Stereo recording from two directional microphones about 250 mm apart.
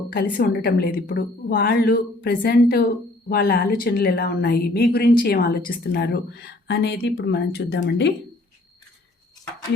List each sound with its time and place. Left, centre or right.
0.1 s a woman's voice: left